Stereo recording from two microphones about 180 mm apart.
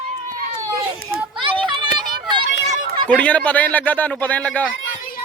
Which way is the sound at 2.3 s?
25° right (ahead or behind).